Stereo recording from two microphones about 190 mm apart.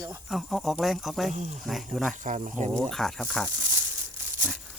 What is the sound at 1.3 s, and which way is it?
Speech, 35° right (ahead or behind).